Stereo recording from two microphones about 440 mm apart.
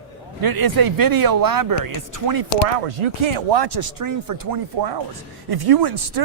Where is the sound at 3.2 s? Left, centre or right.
Right.